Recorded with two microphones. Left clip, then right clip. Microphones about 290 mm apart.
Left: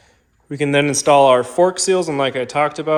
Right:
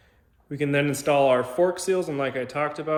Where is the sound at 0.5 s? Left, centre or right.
Left.